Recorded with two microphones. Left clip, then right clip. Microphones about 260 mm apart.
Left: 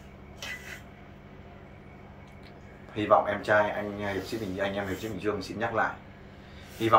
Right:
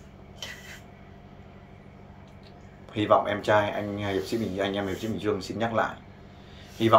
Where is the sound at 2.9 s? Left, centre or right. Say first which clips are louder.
Right 1 dB; right.